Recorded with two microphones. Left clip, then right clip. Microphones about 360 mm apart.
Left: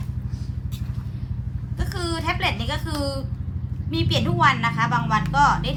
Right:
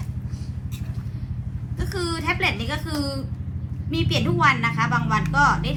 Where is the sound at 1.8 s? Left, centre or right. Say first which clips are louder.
Right 1 dB; centre.